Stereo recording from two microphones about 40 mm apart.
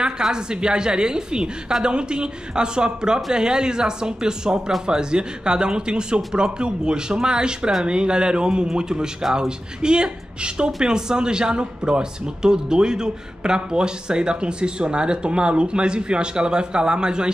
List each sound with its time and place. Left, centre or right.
0.3 s speech: right